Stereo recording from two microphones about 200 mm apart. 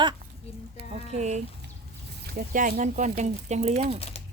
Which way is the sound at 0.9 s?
35° right (ahead or behind).